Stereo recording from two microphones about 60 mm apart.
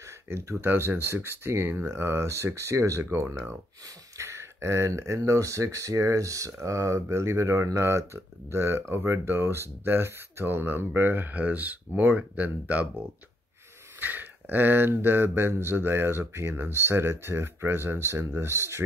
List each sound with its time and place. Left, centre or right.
0.0 s a sound: right
0.7 s speech: right
3.0 s speech: right